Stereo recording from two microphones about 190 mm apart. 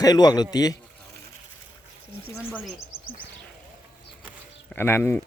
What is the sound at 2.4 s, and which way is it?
Speech, 5° right (ahead or behind).